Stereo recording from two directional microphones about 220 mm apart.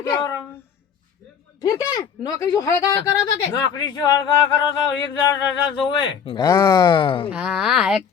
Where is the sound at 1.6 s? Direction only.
15° left (ahead or behind).